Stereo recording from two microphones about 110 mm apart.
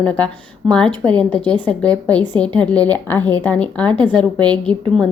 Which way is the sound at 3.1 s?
35° right (ahead or behind).